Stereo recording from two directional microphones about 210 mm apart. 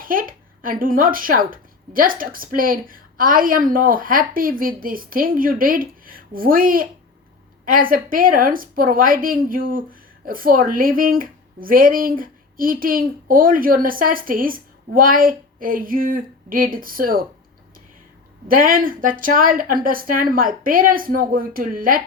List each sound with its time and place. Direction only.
0.0 s speech: 40° right (ahead or behind)
18.4 s speech: 40° right (ahead or behind)